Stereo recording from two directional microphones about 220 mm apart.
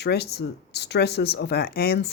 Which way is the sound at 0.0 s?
45° left (ahead or behind).